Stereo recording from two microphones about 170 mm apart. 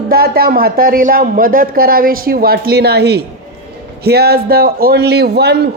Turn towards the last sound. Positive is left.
turn(degrees=-75)  # may be behind; listen again after turning